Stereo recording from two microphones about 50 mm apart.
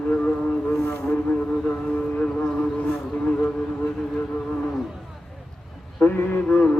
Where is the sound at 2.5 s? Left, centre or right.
Left.